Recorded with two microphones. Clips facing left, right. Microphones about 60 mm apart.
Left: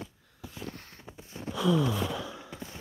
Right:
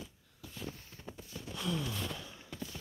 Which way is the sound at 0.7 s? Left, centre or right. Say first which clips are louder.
Left 7 dB; left.